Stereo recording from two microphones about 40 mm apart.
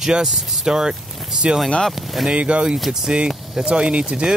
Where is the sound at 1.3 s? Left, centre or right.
Centre.